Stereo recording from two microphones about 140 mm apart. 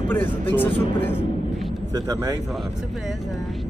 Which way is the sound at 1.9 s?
25° right (ahead or behind).